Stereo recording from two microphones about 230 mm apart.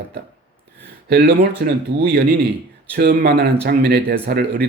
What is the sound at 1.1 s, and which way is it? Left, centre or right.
Speech, right.